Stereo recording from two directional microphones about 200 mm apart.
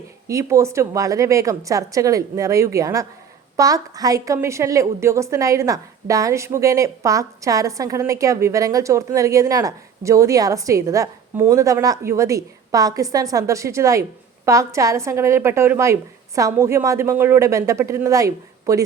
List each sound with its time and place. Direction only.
0.3 s a woman's voice: 15° right (ahead or behind)